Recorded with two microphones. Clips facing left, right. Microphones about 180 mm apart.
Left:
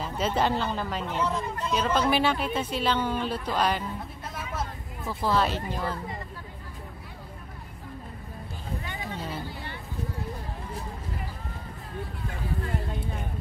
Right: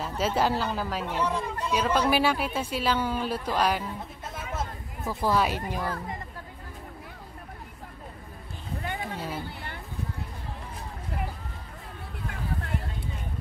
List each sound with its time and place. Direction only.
0.0 s speech: 5° right (ahead or behind)
5.0 s speech: 10° right (ahead or behind)
8.8 s a sound: 50° right (ahead or behind)